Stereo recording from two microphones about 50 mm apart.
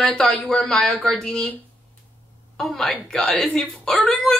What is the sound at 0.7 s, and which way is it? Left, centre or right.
Speech, centre.